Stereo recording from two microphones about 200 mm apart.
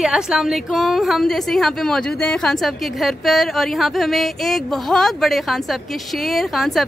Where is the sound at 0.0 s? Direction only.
5° right (ahead or behind).